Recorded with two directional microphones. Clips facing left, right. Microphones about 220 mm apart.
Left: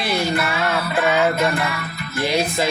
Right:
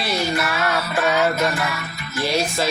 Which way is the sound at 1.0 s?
15° left (ahead or behind).